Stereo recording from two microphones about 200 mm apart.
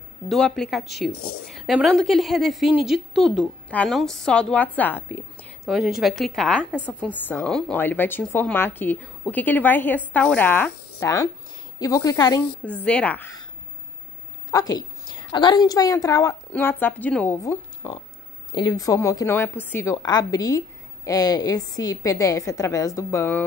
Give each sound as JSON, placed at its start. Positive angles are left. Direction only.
{"t": 0.3, "sound": "a woman's voice", "side_deg": 0}
{"t": 5.7, "sound": "a woman's voice", "side_deg": 0}
{"t": 12.8, "sound": "a woman's voice", "side_deg": 5}
{"t": 14.5, "sound": "a woman's voice", "side_deg": 20}